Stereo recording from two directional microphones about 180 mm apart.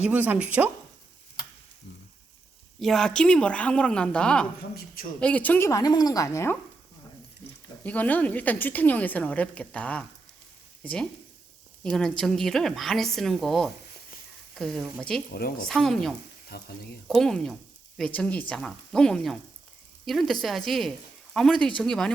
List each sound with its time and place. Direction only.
0.0 s a woman's voice: 10° right (ahead or behind)
2.8 s a woman's voice: centre (ahead or behind)
7.9 s a woman's voice: 10° left (ahead or behind)
15.3 s a woman's voice: 55° left (ahead or behind)
15.6 s a woman's voice: 5° left (ahead or behind)
16.5 s speech: 60° left (ahead or behind)
17.1 s a woman's voice: centre (ahead or behind)